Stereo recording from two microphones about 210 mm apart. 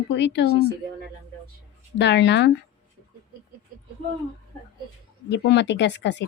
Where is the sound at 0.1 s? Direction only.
55° left (ahead or behind).